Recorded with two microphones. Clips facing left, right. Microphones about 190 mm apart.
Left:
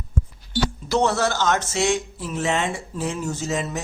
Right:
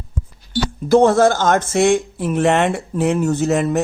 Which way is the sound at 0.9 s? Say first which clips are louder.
Right 10 dB; 50° right (ahead or behind).